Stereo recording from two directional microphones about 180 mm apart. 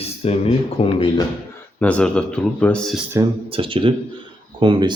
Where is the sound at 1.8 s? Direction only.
5° left (ahead or behind).